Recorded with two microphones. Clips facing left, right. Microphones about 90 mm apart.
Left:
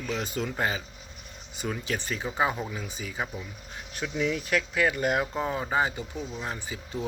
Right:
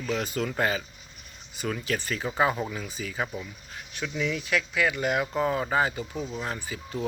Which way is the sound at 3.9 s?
35° left (ahead or behind).